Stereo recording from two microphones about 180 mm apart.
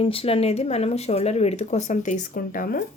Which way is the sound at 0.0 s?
30° left (ahead or behind).